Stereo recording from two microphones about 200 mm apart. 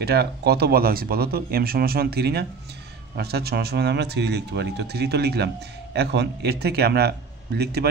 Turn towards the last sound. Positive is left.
turn(degrees=-55)  # may be behind; listen again after turning